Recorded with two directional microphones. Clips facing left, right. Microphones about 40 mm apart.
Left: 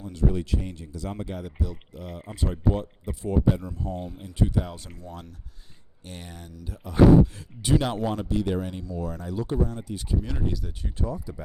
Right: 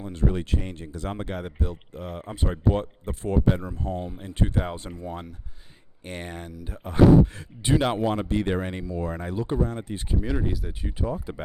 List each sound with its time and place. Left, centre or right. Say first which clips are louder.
0.0 s speech: even; right
3.6 s speech: right 2 dB; right
4.3 s speech: even; right
4.7 s speech: right 6 dB; right
6.1 s speech: right 6 dB; right
7.6 s speech: right 2 dB; right
10.2 s speech: right 3 dB; centre
10.8 s speech: right 3 dB; right